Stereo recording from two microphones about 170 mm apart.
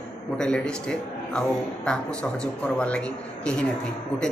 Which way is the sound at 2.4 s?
5° left (ahead or behind).